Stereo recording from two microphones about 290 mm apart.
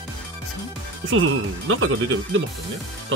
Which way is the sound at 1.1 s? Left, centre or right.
Right.